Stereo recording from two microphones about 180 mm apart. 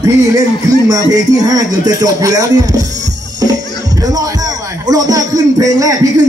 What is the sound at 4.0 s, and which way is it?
Speech, 20° right (ahead or behind).